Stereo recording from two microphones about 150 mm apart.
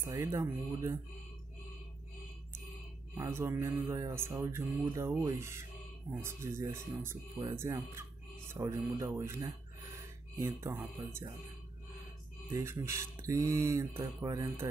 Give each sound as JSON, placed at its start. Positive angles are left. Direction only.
{"t": 0.1, "sound": "speech", "side_deg": -20}
{"t": 3.2, "sound": "speech", "side_deg": -15}
{"t": 12.4, "sound": "speech", "side_deg": -20}